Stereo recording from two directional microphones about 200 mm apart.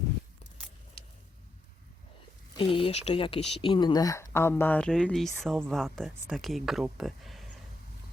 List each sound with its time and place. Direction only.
2.6 s speech: 25° left (ahead or behind); by 7.4 s centre (ahead or behind)